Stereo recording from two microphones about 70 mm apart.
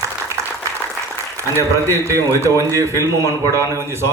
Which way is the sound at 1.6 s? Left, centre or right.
Right.